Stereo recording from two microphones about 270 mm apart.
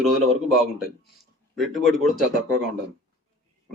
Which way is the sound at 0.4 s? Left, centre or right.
Left.